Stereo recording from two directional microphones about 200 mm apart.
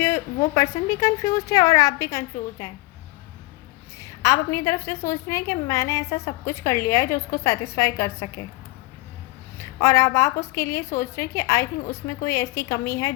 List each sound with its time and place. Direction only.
0.0 s a woman's voice: 15° left (ahead or behind)
3.9 s a woman's voice: 15° left (ahead or behind)
9.6 s a woman's voice: 15° left (ahead or behind)